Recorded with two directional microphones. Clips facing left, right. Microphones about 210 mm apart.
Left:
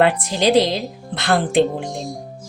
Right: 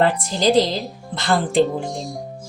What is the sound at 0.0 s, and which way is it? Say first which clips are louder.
A woman's voice: left 1 dB; 60° left (ahead or behind).